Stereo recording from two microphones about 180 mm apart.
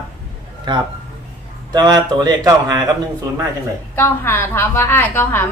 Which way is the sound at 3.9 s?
10° left (ahead or behind).